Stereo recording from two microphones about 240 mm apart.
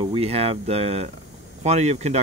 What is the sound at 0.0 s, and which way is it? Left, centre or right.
Speech, right.